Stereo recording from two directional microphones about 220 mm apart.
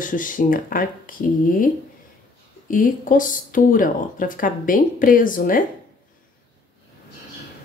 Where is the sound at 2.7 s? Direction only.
35° left (ahead or behind).